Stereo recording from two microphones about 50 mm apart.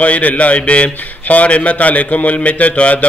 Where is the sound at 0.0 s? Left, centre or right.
Left.